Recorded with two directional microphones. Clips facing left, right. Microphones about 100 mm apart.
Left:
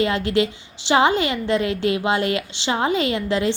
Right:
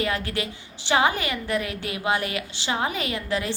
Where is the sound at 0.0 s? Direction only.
25° left (ahead or behind).